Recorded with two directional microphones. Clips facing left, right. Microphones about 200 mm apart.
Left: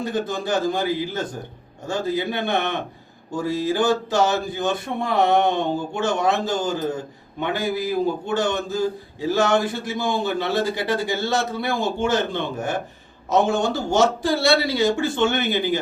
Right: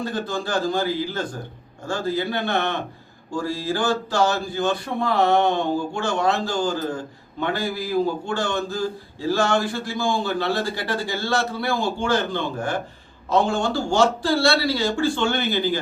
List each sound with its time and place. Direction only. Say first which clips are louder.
0.0 s a man's voice: left 2 dB; 20° left (ahead or behind)